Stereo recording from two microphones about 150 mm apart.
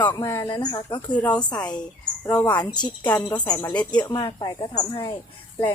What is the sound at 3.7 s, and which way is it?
Speech, 10° left (ahead or behind).